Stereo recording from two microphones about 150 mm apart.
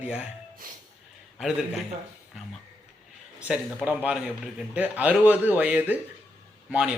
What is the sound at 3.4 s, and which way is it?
A man's voice, 5° right (ahead or behind).